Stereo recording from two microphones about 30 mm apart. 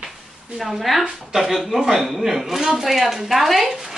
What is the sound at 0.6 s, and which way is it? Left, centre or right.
A woman's voice, centre.